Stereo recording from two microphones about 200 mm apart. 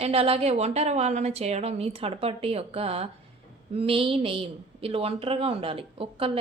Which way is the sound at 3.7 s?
25° right (ahead or behind).